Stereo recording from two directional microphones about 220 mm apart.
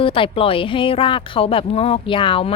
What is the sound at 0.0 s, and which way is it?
Speech, 25° left (ahead or behind).